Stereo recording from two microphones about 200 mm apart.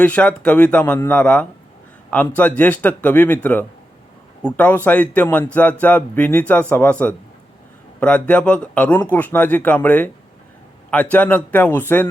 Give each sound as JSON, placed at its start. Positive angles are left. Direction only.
{"t": 0.0, "sound": "speech", "side_deg": 5}